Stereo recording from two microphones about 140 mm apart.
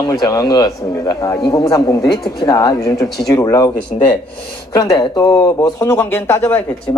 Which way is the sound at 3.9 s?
45° left (ahead or behind).